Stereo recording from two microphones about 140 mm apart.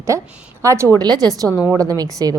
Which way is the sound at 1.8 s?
25° right (ahead or behind).